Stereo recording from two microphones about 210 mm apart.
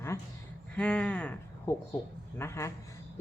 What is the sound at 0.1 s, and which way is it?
A woman's voice, 10° left (ahead or behind).